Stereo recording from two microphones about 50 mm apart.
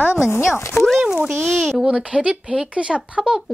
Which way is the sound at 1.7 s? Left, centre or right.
Centre.